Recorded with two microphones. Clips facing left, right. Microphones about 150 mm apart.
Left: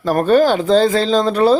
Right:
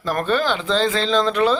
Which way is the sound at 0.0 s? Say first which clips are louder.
Left 8 dB; 40° left (ahead or behind).